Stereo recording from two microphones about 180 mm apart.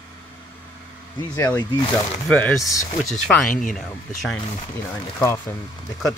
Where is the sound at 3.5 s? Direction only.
50° left (ahead or behind).